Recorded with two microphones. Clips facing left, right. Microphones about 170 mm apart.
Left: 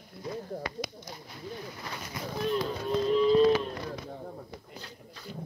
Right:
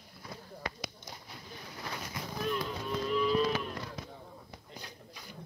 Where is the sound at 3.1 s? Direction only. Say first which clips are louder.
Left 7 dB; 30° left (ahead or behind).